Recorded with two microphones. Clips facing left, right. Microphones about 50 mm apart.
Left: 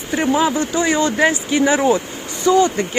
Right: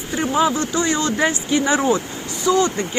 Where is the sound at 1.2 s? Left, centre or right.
Centre.